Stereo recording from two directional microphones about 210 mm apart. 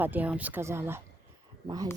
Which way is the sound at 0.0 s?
10° right (ahead or behind).